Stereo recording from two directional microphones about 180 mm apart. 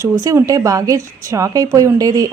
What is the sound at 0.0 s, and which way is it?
Speech, 15° right (ahead or behind).